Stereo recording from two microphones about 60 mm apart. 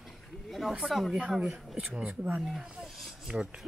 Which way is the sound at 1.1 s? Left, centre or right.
Centre.